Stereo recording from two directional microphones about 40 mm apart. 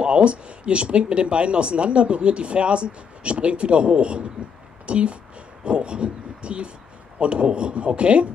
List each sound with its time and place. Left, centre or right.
0.0 s speech: right